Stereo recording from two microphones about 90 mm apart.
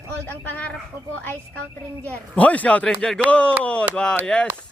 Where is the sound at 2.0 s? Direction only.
15° left (ahead or behind).